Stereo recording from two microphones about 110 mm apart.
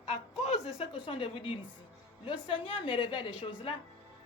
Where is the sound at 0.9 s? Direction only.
55° left (ahead or behind).